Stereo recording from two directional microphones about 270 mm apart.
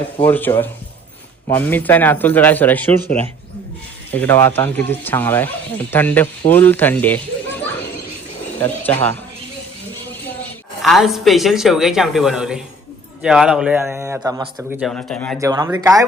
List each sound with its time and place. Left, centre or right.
0.2 s speech: centre
4.1 s speech: centre
8.6 s speech: centre
10.8 s a woman's voice: centre
14.8 s a woman's voice: centre
15.4 s a man's voice: centre